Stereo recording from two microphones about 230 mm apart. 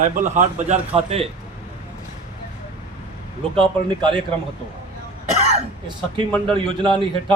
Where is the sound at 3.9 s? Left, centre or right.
Right.